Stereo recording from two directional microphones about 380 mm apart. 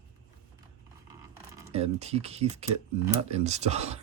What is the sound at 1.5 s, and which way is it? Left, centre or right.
Speech, centre.